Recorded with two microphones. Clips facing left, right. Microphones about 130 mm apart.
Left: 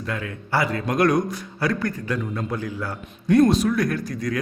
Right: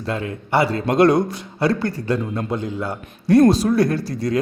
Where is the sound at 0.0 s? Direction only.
30° right (ahead or behind).